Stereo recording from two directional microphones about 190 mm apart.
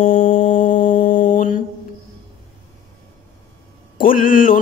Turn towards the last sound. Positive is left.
turn(degrees=45)  # may be behind; listen again after turning